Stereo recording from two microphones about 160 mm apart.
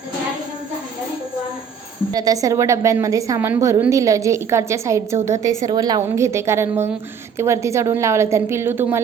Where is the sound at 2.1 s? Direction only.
25° right (ahead or behind).